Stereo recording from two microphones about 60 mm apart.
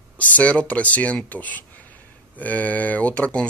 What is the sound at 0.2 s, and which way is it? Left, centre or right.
Speech, left.